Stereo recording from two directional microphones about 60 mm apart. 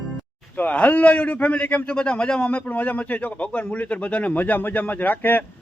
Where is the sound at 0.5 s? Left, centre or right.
Left.